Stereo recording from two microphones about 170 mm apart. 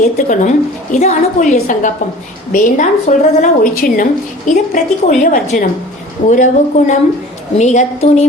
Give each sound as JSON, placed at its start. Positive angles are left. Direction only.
{"t": 0.0, "sound": "speech", "side_deg": 45}